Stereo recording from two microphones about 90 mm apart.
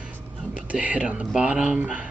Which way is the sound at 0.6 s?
15° right (ahead or behind).